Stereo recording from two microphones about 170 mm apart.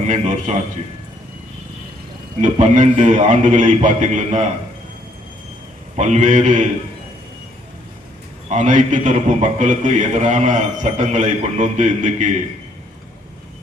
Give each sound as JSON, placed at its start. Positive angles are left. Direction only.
{"t": 0.1, "sound": "a man's voice", "side_deg": -45}
{"t": 2.4, "sound": "a man's voice", "side_deg": -50}
{"t": 6.0, "sound": "a man's voice", "side_deg": -45}
{"t": 8.4, "sound": "a man's voice", "side_deg": -45}